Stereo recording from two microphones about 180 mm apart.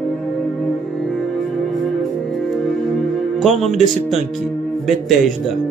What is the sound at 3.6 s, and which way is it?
Speech, centre (ahead or behind).